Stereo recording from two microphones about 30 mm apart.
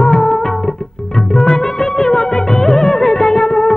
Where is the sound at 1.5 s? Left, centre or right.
Centre.